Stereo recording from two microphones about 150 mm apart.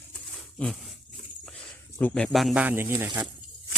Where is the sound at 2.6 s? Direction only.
15° right (ahead or behind).